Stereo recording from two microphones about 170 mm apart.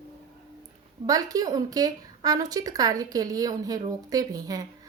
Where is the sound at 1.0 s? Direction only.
20° right (ahead or behind).